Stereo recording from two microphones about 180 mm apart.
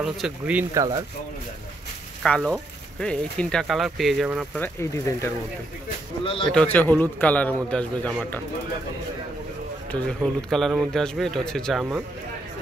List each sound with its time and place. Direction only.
0.0 s speech: 5° right (ahead or behind)
2.2 s speech: 5° left (ahead or behind)
4.6 s speech: 15° left (ahead or behind)
6.2 s speech: 30° left (ahead or behind)
6.5 s speech: 10° left (ahead or behind)
10.0 s speech: centre (ahead or behind)